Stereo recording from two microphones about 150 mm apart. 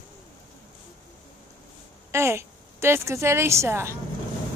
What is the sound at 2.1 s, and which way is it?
A woman's voice, 20° right (ahead or behind).